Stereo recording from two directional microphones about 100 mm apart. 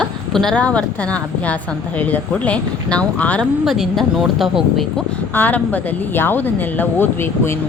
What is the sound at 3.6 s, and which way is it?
Speech, centre (ahead or behind).